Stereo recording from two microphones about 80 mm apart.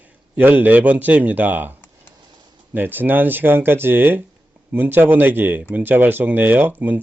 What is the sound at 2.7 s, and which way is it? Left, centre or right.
Speech, right.